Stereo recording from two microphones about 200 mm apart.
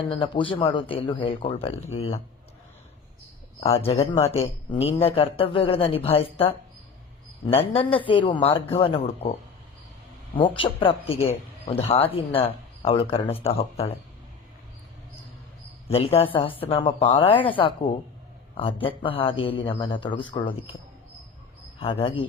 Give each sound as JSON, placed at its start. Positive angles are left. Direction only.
{"t": 0.1, "sound": "speech", "side_deg": 25}
{"t": 3.6, "sound": "speech", "side_deg": 30}
{"t": 10.3, "sound": "speech", "side_deg": 25}
{"t": 15.9, "sound": "speech", "side_deg": 30}
{"t": 21.8, "sound": "speech", "side_deg": 25}